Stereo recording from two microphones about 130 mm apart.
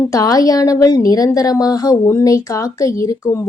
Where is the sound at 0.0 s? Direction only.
30° left (ahead or behind).